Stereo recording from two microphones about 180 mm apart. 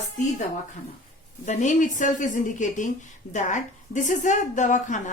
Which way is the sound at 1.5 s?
40° left (ahead or behind).